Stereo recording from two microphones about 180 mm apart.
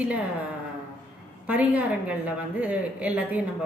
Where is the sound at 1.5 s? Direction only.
10° right (ahead or behind).